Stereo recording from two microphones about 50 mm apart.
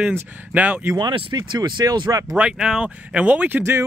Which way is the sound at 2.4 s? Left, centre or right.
Centre.